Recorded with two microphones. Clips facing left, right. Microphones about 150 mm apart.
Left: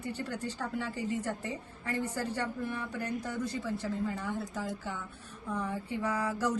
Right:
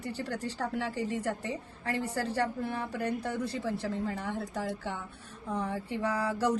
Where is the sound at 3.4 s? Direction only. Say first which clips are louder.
Right 1 dB; 65° right (ahead or behind).